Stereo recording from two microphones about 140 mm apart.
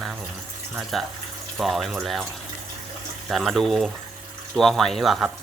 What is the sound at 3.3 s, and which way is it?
Speech, centre (ahead or behind).